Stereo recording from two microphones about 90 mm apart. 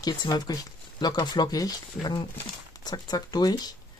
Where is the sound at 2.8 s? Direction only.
50° left (ahead or behind).